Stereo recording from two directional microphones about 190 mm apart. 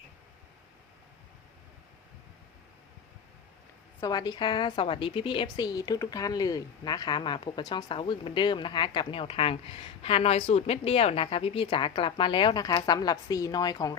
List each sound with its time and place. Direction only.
4.0 s a woman's voice: 20° left (ahead or behind)